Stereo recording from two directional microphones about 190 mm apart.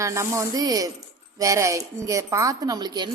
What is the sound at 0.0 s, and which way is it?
A woman's voice, 15° right (ahead or behind).